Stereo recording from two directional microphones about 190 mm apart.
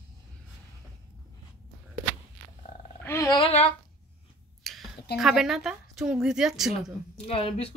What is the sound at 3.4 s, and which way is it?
Speech, 30° left (ahead or behind).